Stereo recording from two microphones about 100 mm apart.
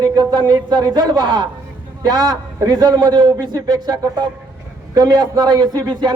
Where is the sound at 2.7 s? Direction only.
45° right (ahead or behind).